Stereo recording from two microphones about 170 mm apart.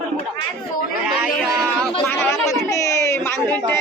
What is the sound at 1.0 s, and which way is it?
Speech, 5° right (ahead or behind).